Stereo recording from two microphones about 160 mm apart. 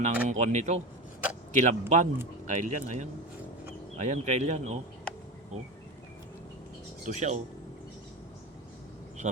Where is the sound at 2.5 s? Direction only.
50° right (ahead or behind).